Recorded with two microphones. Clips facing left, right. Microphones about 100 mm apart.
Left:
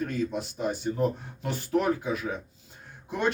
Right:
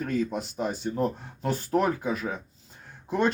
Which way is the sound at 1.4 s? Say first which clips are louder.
Right 2 dB; 40° right (ahead or behind).